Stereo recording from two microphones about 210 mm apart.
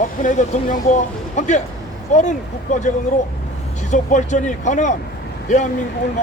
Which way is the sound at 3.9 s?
35° left (ahead or behind).